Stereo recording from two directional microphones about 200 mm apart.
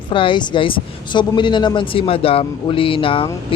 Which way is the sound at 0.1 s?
25° left (ahead or behind).